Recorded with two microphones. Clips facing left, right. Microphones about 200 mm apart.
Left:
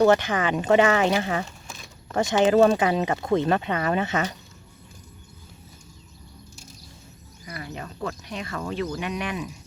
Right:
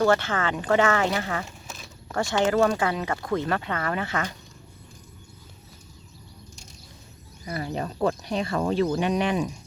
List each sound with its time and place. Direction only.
0.0 s speech: 15° left (ahead or behind)
1.6 s a sound: 5° right (ahead or behind)
2.1 s speech: 20° left (ahead or behind)
7.4 s speech: 30° right (ahead or behind)